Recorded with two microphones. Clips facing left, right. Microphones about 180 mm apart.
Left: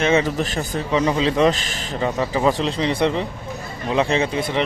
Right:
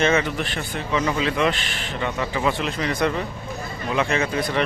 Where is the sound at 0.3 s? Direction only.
40° left (ahead or behind).